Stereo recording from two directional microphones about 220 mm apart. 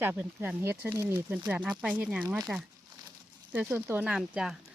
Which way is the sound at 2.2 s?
15° right (ahead or behind).